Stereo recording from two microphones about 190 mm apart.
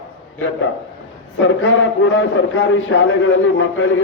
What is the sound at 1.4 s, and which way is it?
A man's voice, 90° left.